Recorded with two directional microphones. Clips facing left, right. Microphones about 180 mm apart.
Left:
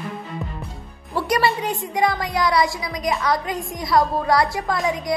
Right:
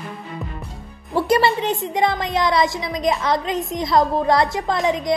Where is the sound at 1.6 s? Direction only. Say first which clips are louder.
Right 2 dB; 25° right (ahead or behind).